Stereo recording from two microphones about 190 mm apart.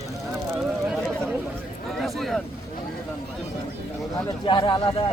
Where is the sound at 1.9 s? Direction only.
Centre (ahead or behind).